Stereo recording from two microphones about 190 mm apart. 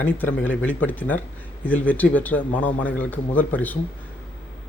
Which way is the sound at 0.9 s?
10° left (ahead or behind).